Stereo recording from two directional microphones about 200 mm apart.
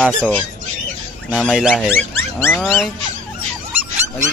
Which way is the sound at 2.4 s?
10° left (ahead or behind).